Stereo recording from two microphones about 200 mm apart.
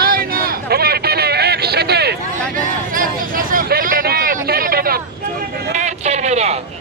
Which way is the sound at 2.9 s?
45° right (ahead or behind).